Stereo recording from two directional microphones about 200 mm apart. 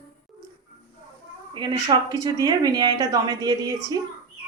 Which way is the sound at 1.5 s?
20° right (ahead or behind).